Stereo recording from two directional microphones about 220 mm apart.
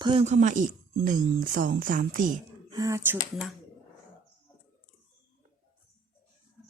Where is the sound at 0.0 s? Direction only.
25° right (ahead or behind).